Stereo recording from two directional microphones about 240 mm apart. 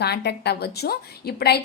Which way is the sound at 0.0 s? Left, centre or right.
Left.